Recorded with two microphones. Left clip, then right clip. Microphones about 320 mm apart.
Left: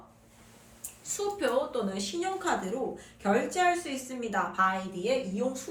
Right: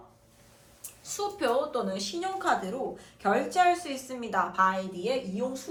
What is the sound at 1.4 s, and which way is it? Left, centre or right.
A woman's voice, centre.